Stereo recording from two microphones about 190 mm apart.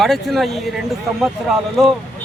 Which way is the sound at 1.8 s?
Centre (ahead or behind).